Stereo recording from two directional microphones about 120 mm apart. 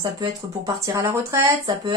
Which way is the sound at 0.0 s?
35° right (ahead or behind).